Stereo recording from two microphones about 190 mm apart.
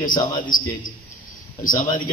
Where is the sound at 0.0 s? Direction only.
45° left (ahead or behind).